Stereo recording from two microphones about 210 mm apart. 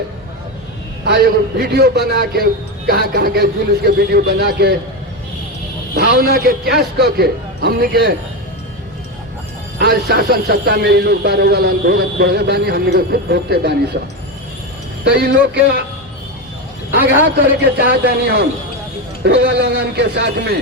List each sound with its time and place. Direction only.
1.0 s a man's voice: 45° right (ahead or behind)
6.0 s a man's voice: 45° right (ahead or behind)
9.7 s a man's voice: 50° right (ahead or behind)
16.9 s a man's voice: 45° right (ahead or behind)